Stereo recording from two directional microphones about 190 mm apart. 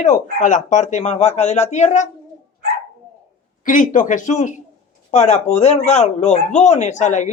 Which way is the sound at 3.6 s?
45° left (ahead or behind).